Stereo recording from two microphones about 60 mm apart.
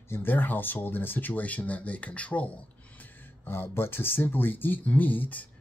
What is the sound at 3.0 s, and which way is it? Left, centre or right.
Speech, left.